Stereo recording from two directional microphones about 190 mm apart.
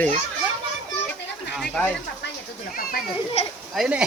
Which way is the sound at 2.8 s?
50° left (ahead or behind).